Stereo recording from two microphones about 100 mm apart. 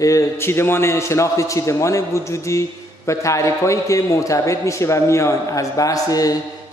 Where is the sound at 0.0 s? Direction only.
30° left (ahead or behind).